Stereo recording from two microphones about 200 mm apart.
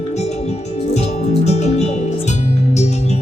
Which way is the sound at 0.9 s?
35° left (ahead or behind).